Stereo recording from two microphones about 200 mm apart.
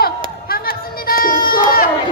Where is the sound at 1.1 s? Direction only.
45° left (ahead or behind).